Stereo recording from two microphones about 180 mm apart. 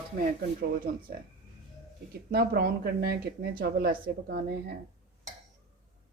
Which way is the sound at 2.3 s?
60° right (ahead or behind).